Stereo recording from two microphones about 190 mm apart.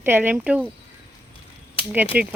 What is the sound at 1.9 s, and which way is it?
Speech, 10° right (ahead or behind).